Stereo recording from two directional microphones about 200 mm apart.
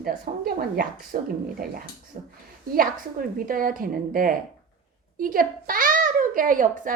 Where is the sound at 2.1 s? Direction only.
30° right (ahead or behind).